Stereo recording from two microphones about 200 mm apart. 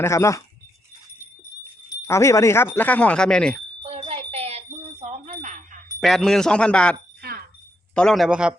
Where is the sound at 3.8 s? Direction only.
30° right (ahead or behind).